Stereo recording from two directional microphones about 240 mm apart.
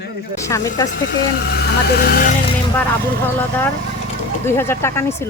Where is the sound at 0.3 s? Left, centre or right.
Centre.